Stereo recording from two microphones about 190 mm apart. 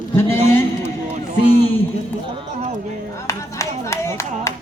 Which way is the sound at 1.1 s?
35° right (ahead or behind).